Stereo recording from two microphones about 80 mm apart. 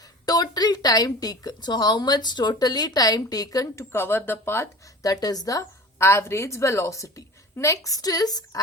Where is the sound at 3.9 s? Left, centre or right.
Left.